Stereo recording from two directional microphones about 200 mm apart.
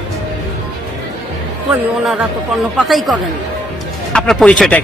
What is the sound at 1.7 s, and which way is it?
Speech, 5° right (ahead or behind).